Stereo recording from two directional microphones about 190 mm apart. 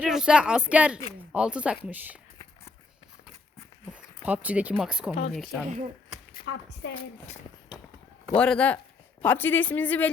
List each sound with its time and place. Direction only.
0.0 s speech: 5° right (ahead or behind)
3.9 s speech: 5° right (ahead or behind)
6.4 s a woman's voice: 60° left (ahead or behind)
8.3 s a woman's voice: 5° left (ahead or behind)